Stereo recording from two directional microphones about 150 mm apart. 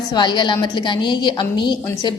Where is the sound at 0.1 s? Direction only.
30° left (ahead or behind).